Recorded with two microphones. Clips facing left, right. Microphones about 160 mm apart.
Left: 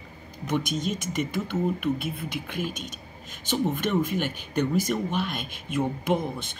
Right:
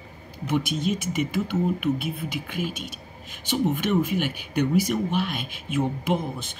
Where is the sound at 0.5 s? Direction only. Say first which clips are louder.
Right 3 dB; 55° right (ahead or behind).